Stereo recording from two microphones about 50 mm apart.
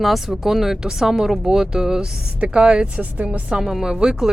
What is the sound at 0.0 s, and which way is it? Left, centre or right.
Speech, centre.